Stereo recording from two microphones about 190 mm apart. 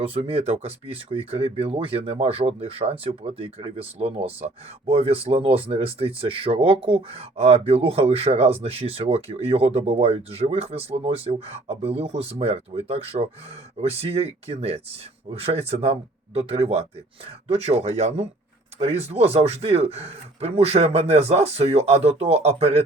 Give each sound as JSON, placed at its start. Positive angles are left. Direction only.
{"t": 0.0, "sound": "speech", "side_deg": -30}